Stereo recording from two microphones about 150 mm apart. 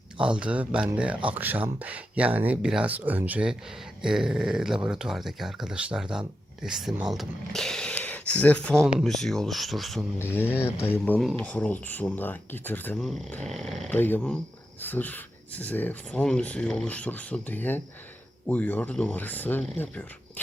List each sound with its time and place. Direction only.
0.2 s speech: 5° right (ahead or behind)
10.2 s speech: 15° left (ahead or behind)
13.4 s speech: centre (ahead or behind)
13.9 s speech: 15° left (ahead or behind)